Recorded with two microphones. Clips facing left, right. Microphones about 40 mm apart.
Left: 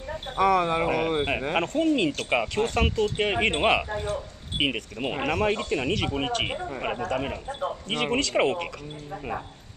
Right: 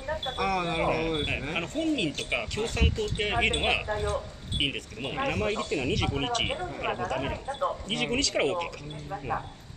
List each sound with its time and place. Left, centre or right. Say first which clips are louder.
0.4 s speech: left 7 dB; centre
3.9 s speech: even; centre
4.6 s speech: left 4 dB; centre
6.0 s speech: left 1 dB; centre
8.4 s speech: left 4 dB; centre